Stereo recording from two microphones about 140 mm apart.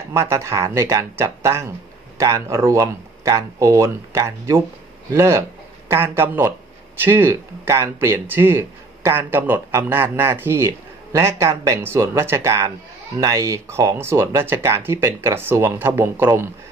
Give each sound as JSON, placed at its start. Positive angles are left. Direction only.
{"t": 0.1, "sound": "speech", "side_deg": -20}